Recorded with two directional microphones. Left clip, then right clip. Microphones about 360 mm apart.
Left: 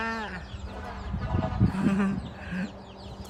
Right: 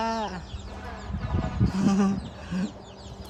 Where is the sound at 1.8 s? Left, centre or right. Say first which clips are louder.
Right 4 dB; centre.